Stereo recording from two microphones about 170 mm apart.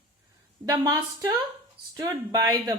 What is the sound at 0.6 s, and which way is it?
A woman's voice, 20° right (ahead or behind).